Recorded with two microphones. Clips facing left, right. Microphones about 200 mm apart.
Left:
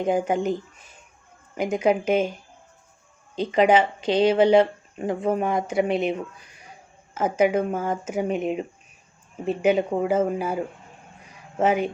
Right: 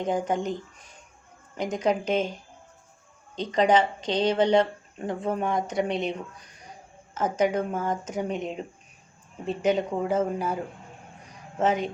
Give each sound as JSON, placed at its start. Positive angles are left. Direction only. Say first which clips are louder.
{"t": 0.0, "sound": "speech", "louder": "left 4 dB", "side_deg": 10}
{"t": 3.3, "sound": "speech", "louder": "left 3 dB", "side_deg": 10}
{"t": 11.6, "sound": "speech", "louder": "left 3 dB", "side_deg": 10}